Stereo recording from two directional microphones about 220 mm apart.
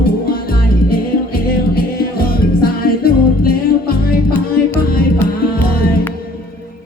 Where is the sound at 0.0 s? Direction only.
45° left (ahead or behind).